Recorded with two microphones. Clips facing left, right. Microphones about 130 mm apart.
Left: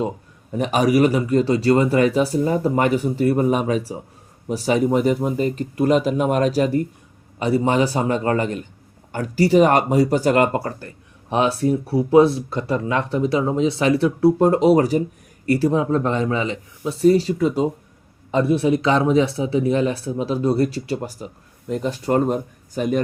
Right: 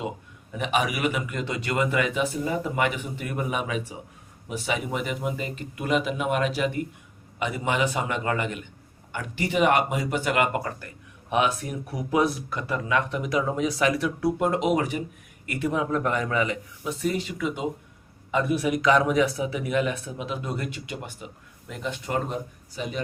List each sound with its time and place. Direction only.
0.5 s speech: 40° left (ahead or behind)